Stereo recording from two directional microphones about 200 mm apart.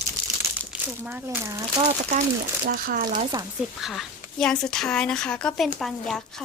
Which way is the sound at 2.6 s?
45° right (ahead or behind).